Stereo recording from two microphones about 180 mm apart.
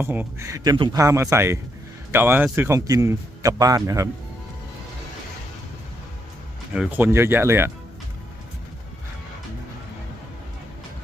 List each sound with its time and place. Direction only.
0.0 s a man's voice: 10° right (ahead or behind)
6.7 s a man's voice: 10° right (ahead or behind)